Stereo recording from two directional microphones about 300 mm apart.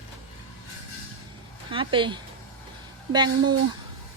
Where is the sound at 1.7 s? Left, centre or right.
Centre.